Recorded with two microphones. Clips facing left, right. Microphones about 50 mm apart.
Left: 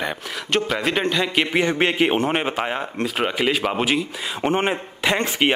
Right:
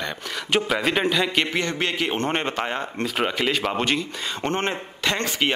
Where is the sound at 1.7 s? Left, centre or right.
Left.